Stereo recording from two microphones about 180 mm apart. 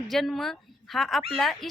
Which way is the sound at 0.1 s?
Centre (ahead or behind).